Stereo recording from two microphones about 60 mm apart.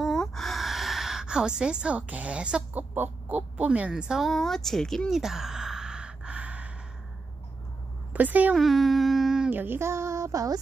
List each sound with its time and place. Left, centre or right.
0.0 s gasp: centre
2.7 s speech: right
4.2 s speech: centre
5.1 s gasp: centre; by 6.7 s right
8.1 s speech: right
8.5 s speech: centre
9.5 s female singing: right
9.8 s a sound: right